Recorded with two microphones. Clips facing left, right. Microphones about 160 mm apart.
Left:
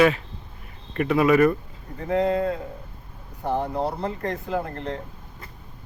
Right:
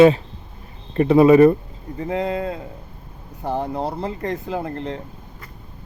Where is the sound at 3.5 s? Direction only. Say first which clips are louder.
Right 1 dB; 25° right (ahead or behind).